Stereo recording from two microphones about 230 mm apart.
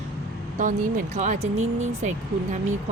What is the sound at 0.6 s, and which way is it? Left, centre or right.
Speech, right.